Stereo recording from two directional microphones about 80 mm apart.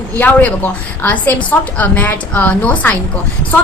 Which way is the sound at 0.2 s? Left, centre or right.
Left.